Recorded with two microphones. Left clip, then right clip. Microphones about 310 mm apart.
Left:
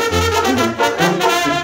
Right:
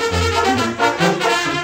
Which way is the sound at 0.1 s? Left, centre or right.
Left.